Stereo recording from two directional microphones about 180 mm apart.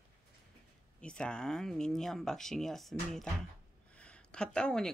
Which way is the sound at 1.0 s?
5° left (ahead or behind).